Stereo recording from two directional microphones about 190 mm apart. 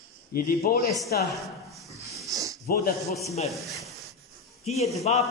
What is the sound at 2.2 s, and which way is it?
Sniff, 15° right (ahead or behind).